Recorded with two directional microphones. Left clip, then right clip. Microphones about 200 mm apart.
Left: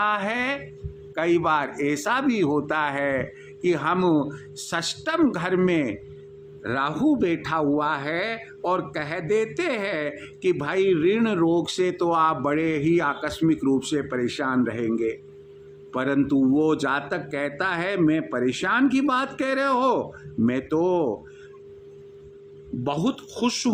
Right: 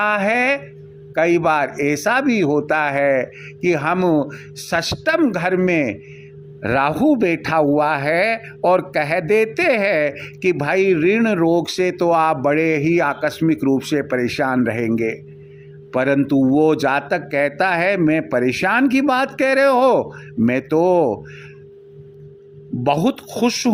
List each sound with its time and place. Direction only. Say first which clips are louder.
0.0 s speech: right 7 dB; 30° right (ahead or behind)
22.8 s speech: right 9 dB; 35° right (ahead or behind)